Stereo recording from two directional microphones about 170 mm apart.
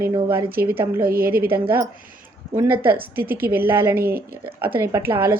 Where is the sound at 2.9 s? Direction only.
60° right (ahead or behind).